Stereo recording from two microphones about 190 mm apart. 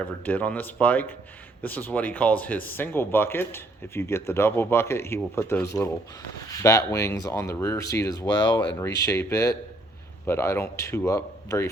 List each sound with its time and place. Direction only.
0.0 s speech: 10° left (ahead or behind)